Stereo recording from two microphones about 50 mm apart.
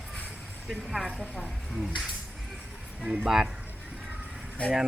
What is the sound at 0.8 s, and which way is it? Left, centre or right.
Speech, centre.